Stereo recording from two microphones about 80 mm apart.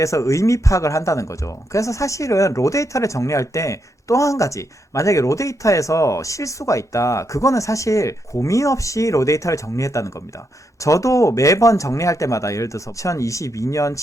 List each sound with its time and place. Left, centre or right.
0.0 s speech: left